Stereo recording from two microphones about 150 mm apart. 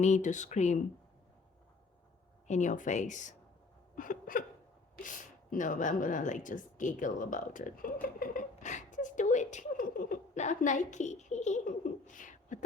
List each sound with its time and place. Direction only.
0.0 s speech: 55° left (ahead or behind)
2.5 s speech: 55° left (ahead or behind)
3.9 s hiccup: 60° left (ahead or behind)
5.0 s speech: 60° left (ahead or behind)